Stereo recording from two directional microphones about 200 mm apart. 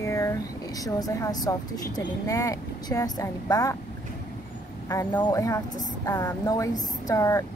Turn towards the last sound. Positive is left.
turn(degrees=15)  # may be behind; listen again after turning